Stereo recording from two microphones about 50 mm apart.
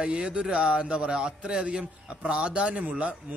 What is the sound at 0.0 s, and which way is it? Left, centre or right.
Speech, centre.